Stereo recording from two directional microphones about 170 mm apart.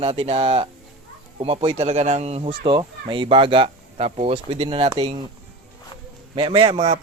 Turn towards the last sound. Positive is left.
turn(degrees=-40)  # may be behind; listen again after turning